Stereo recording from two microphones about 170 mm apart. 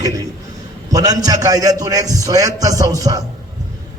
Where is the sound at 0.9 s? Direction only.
20° right (ahead or behind).